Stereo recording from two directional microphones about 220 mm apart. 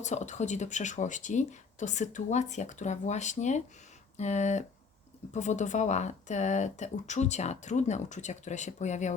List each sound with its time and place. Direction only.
0.0 s speech: 30° left (ahead or behind)